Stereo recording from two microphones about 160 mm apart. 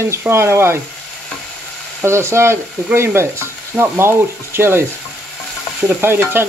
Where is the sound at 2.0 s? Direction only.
15° right (ahead or behind).